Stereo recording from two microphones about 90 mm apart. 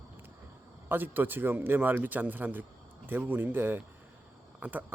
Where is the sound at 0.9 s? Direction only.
20° right (ahead or behind).